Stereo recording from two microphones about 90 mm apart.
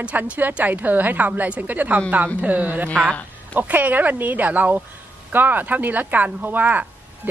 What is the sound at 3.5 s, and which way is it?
A man's voice, 20° right (ahead or behind).